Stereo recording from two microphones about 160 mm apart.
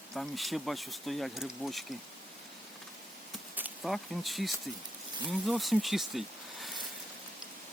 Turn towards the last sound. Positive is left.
turn(degrees=0)  # may be behind; listen again after turning